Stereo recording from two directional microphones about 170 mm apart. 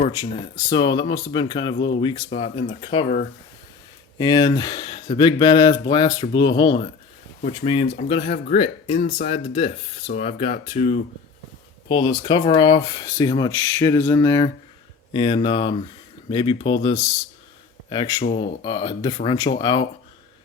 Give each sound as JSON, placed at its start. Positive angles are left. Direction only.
{"t": 0.5, "sound": "speech", "side_deg": 25}
{"t": 4.2, "sound": "speech", "side_deg": 25}
{"t": 8.9, "sound": "speech", "side_deg": 55}
{"t": 9.3, "sound": "speech", "side_deg": 35}
{"t": 11.9, "sound": "speech", "side_deg": 25}
{"t": 15.1, "sound": "speech", "side_deg": 30}